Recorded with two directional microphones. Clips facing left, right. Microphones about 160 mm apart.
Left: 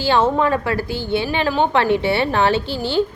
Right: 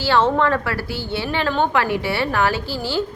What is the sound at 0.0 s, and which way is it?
A woman's voice, 15° left (ahead or behind).